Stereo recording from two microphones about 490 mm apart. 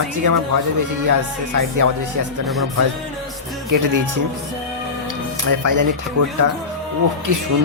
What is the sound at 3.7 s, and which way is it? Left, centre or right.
Speech, right.